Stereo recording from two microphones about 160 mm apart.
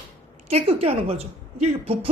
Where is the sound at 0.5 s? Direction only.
40° right (ahead or behind).